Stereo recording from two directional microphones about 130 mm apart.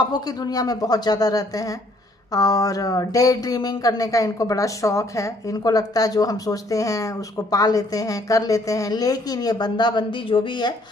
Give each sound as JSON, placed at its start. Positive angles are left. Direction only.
{"t": 0.0, "sound": "speech", "side_deg": 30}